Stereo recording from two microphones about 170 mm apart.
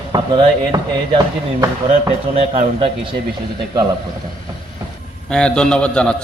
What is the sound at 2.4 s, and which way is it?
Speech, 35° right (ahead or behind).